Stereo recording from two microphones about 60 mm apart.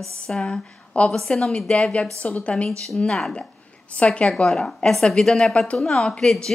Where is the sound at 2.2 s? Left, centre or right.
Left.